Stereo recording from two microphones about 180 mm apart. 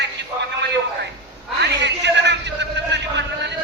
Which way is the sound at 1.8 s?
75° right (ahead or behind).